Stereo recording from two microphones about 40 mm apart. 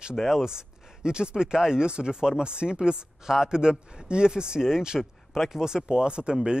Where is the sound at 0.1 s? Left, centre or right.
Centre.